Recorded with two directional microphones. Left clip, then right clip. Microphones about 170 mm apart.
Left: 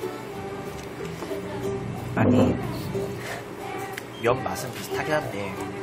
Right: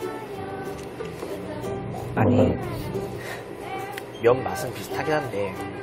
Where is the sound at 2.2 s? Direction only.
25° right (ahead or behind).